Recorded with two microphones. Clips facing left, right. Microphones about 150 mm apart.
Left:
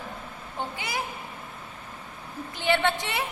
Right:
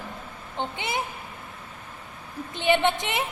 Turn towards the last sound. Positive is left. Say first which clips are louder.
# right 2 dB
turn(degrees=-20)  # may be behind; listen again after turning